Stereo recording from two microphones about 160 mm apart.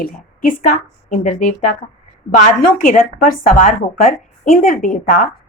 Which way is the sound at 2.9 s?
60° left (ahead or behind).